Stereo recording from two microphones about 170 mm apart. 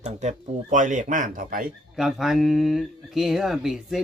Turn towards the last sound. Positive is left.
turn(degrees=0)  # may be behind; listen again after turning